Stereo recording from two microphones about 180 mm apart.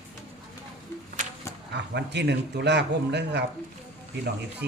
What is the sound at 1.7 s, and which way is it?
Speech, 70° right (ahead or behind).